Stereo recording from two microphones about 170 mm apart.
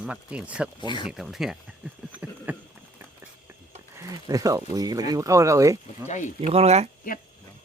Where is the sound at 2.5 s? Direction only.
10° right (ahead or behind).